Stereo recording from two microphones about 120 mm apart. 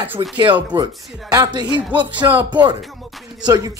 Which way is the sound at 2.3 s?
15° right (ahead or behind).